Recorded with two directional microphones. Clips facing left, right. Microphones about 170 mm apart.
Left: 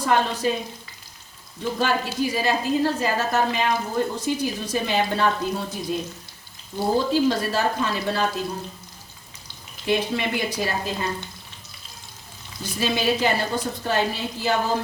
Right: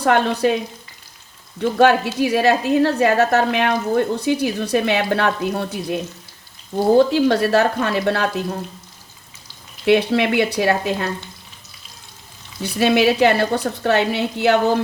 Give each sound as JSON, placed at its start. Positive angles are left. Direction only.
{"t": 0.0, "sound": "a woman's voice", "side_deg": -65}
{"t": 1.8, "sound": "a woman's voice", "side_deg": -65}
{"t": 7.1, "sound": "a woman's voice", "side_deg": -70}
{"t": 9.8, "sound": "a woman's voice", "side_deg": -70}
{"t": 12.6, "sound": "a woman's voice", "side_deg": -70}